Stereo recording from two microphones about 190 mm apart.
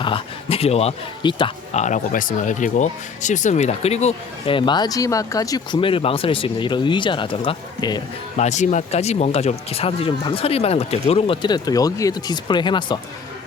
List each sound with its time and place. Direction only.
0.0 s speech: 30° left (ahead or behind)
8.4 s speech: 40° left (ahead or behind)